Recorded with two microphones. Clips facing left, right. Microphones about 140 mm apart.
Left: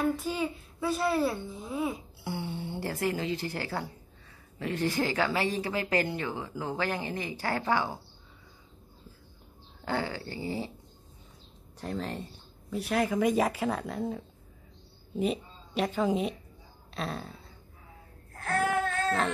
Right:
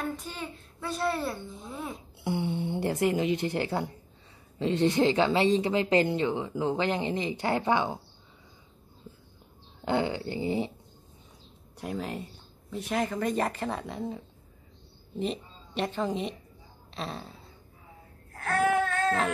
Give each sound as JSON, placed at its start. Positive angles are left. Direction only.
{"t": 0.0, "sound": "a child's voice", "side_deg": 5}
{"t": 2.2, "sound": "speech", "side_deg": -20}
{"t": 9.8, "sound": "speech", "side_deg": -20}
{"t": 11.8, "sound": "a sound", "side_deg": -10}
{"t": 12.7, "sound": "a child's voice", "side_deg": 5}
{"t": 18.6, "sound": "a sound", "side_deg": 0}